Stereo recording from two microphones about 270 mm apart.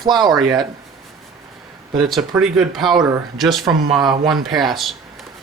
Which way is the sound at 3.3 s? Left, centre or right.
Centre.